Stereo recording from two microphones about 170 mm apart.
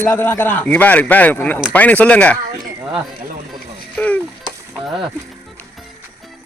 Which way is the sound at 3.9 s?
10° left (ahead or behind).